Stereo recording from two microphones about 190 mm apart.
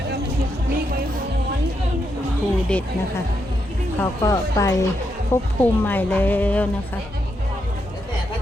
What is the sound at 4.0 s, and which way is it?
Speech, 15° left (ahead or behind).